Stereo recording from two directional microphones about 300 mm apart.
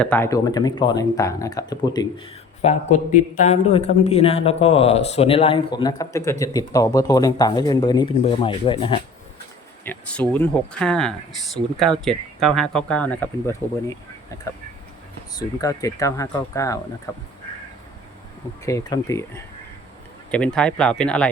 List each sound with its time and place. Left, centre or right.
0.0 s a man's voice: centre
9.8 s speech: centre
15.4 s speech: centre
18.6 s speech: centre